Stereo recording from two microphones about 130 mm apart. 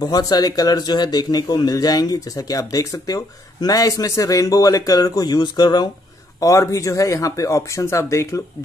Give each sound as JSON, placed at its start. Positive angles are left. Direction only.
{"t": 0.0, "sound": "speech", "side_deg": 30}